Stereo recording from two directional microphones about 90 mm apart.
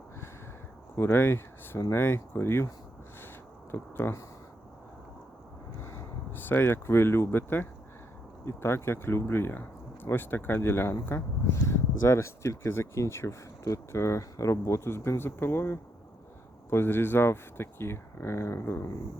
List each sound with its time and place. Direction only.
0.9 s speech: 25° left (ahead or behind)
3.7 s speech: 25° left (ahead or behind)
5.8 s speech: 25° left (ahead or behind)